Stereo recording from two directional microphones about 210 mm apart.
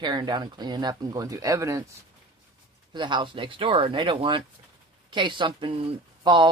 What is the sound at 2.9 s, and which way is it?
A man's voice, 20° right (ahead or behind).